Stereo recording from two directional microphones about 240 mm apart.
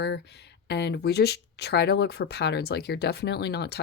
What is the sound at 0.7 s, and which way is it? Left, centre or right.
Speech, left.